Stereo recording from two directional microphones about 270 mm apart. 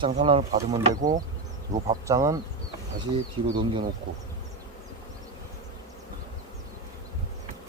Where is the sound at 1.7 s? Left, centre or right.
Centre.